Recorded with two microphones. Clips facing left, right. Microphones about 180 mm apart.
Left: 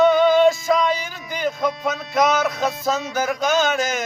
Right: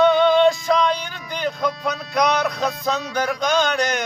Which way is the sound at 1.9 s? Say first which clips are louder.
Left 1 dB; centre (ahead or behind).